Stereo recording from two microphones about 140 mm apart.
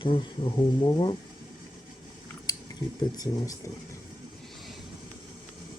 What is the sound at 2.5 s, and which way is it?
Chewing, 30° left (ahead or behind).